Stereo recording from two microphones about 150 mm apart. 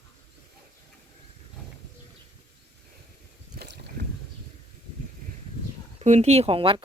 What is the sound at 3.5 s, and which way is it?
Boat, 90° right.